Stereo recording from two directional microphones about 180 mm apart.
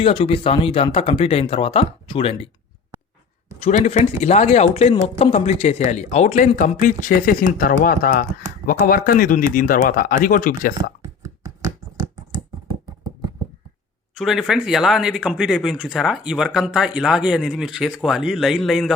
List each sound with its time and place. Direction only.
0.0 s speech: 30° left (ahead or behind)
3.8 s speech: 40° left (ahead or behind)
11.0 s a sound: 20° right (ahead or behind)
14.2 s speech: centre (ahead or behind)